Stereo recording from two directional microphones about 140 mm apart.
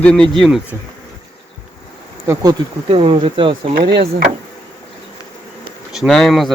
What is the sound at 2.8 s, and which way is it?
Speech, 40° right (ahead or behind).